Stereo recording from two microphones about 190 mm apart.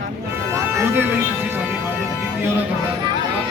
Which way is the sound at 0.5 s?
15° right (ahead or behind).